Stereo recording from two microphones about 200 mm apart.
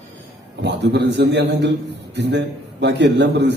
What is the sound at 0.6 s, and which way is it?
A man's voice, 60° right (ahead or behind).